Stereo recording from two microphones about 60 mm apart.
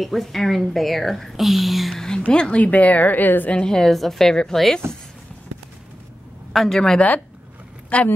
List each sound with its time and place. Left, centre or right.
0.0 s speech: centre
2.0 s a woman's voice: centre; by 3.5 s left
3.5 s a woman's voice: centre
6.5 s speech: centre
7.9 s speech: left